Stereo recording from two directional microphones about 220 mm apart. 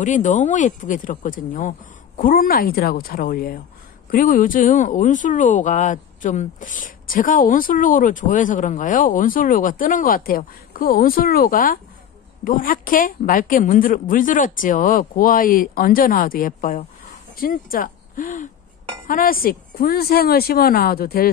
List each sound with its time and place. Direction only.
0.0 s a woman's voice: 35° left (ahead or behind)